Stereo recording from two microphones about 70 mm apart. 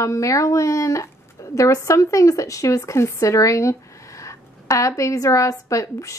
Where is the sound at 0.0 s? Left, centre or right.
Left.